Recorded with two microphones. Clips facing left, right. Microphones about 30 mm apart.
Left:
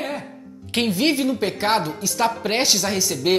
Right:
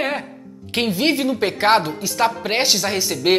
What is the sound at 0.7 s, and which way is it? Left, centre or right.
A woman's voice, centre.